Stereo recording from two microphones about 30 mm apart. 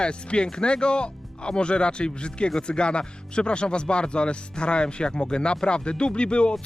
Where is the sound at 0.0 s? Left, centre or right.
Left.